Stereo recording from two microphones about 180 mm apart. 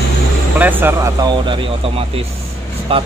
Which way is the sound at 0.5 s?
10° right (ahead or behind).